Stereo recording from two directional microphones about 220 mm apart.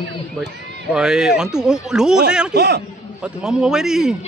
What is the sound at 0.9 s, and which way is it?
A man's voice, 5° right (ahead or behind).